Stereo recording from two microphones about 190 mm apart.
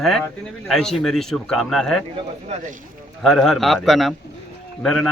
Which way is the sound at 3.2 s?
Centre (ahead or behind).